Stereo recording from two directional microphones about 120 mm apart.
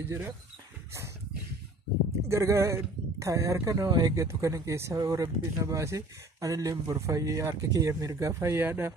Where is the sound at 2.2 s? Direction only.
25° right (ahead or behind).